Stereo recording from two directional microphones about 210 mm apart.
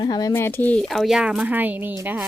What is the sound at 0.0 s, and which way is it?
Speech, 20° left (ahead or behind).